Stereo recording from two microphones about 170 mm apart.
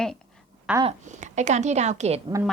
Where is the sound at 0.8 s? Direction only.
45° right (ahead or behind).